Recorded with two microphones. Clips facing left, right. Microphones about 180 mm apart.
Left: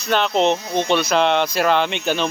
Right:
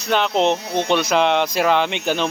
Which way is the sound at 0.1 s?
15° right (ahead or behind).